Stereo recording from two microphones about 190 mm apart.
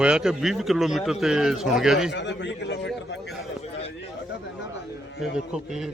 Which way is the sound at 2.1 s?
70° left (ahead or behind).